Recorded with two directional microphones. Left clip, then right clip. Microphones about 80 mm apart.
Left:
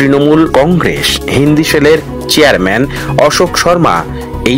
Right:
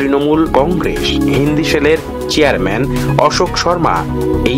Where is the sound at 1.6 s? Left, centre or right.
Left.